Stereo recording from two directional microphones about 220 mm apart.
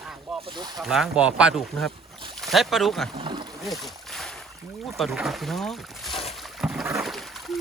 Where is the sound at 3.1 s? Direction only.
20° right (ahead or behind).